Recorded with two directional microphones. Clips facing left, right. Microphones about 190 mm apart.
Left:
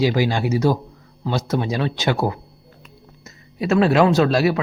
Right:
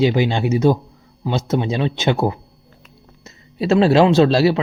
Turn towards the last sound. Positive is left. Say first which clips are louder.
# right 3 dB
turn(degrees=-30)  # may be behind; listen again after turning